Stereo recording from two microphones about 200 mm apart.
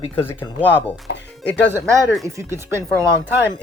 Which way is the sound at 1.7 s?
15° right (ahead or behind).